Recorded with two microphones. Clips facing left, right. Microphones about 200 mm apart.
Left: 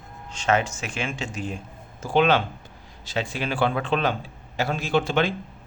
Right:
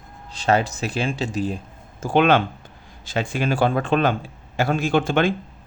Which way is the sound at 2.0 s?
55° right (ahead or behind).